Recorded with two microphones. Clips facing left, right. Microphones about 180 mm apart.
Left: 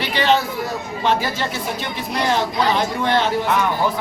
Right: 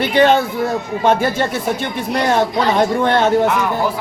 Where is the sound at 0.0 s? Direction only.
50° right (ahead or behind).